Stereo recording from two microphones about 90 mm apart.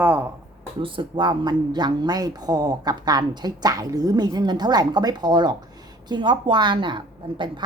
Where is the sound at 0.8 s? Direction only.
75° right (ahead or behind).